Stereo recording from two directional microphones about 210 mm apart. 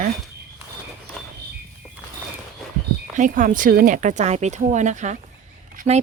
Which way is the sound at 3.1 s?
40° right (ahead or behind).